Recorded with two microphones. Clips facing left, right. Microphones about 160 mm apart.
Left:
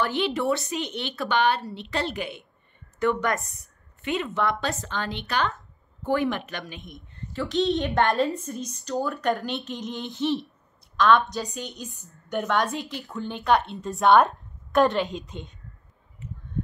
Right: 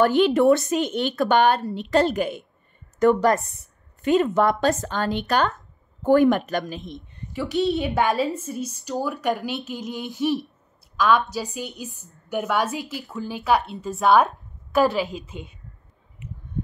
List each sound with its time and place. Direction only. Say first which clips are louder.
0.0 s a woman's voice: right 8 dB; 45° right (ahead or behind)
6.9 s a woman's voice: right 4 dB; 15° right (ahead or behind)
16.2 s a sound: right 1 dB; 15° right (ahead or behind)